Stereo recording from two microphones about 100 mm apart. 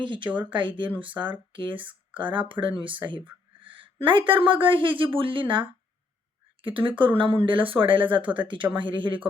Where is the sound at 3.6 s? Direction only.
60° right (ahead or behind).